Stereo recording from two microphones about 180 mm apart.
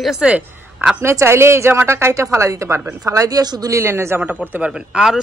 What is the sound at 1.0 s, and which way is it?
A woman's voice, 15° right (ahead or behind).